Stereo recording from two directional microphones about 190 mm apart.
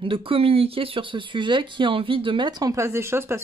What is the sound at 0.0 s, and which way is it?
Speech, 30° right (ahead or behind).